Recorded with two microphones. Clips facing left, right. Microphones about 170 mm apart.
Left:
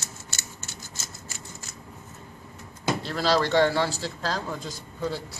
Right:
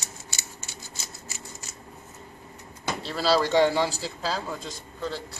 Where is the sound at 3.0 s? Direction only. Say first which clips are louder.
Right 2 dB; 5° right (ahead or behind).